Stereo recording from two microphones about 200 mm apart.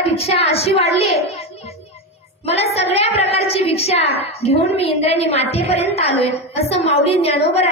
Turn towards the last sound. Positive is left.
turn(degrees=30)  # may be behind; listen again after turning